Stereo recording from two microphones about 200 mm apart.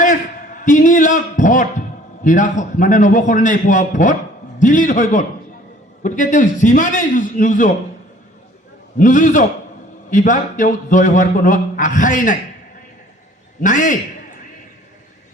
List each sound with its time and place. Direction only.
0.0 s a sound: 40° left (ahead or behind)
2.2 s a man's voice: 40° left (ahead or behind)
9.0 s a man's voice: 40° left (ahead or behind)
13.6 s a man's voice: 40° left (ahead or behind)